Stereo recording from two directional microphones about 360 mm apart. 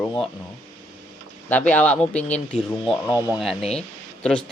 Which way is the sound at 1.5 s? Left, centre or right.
Centre.